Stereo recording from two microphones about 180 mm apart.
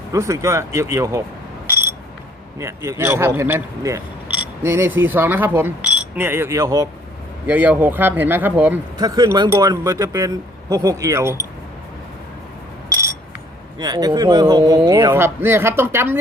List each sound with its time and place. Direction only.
0.1 s speech: 15° right (ahead or behind)
1.7 s a sound: 15° right (ahead or behind)
2.6 s speech: 15° right (ahead or behind)
9.0 s speech: 20° right (ahead or behind)
13.7 s speech: 20° right (ahead or behind)